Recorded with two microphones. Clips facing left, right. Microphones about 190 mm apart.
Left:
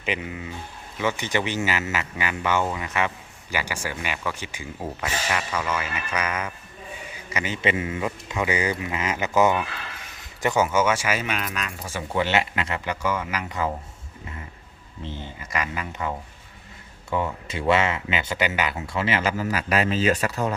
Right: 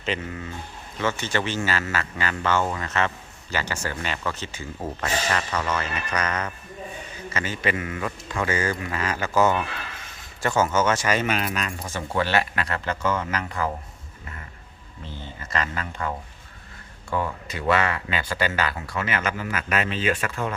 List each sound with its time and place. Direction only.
0.0 s speech: 15° left (ahead or behind)
11.3 s speech: 40° right (ahead or behind)
11.5 s speech: centre (ahead or behind)
11.9 s speech: 20° left (ahead or behind)
15.1 s speech: 15° left (ahead or behind); by 20.5 s 40° left (ahead or behind)